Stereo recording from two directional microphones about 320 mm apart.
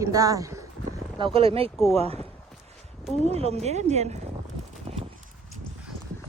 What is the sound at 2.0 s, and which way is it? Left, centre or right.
Speech, centre.